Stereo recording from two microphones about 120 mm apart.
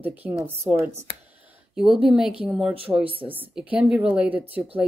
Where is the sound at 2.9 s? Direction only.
20° right (ahead or behind).